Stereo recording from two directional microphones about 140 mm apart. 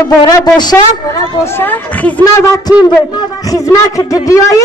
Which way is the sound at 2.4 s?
25° left (ahead or behind).